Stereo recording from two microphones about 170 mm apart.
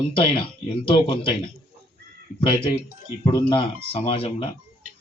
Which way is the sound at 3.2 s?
30° left (ahead or behind).